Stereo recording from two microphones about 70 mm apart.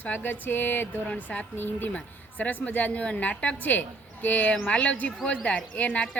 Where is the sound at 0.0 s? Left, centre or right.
Left.